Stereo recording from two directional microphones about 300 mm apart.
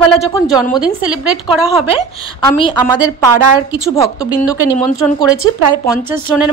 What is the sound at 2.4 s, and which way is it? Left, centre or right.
Speech, centre.